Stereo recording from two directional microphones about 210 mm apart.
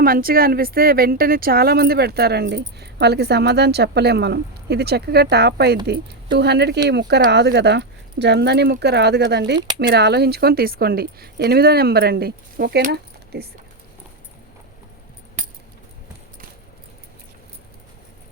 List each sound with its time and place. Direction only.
0.0 s speech: 45° right (ahead or behind)